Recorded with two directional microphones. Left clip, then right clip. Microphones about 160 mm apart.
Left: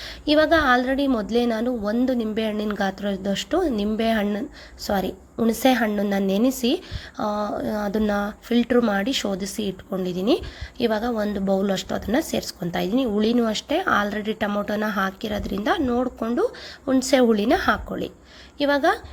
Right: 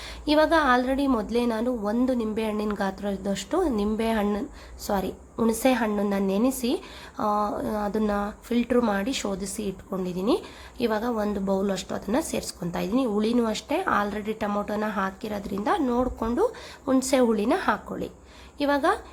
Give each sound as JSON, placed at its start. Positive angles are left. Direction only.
{"t": 0.3, "sound": "a woman's voice", "side_deg": 10}
{"t": 15.8, "sound": "a woman's voice", "side_deg": 0}
{"t": 17.1, "sound": "a woman's voice", "side_deg": 15}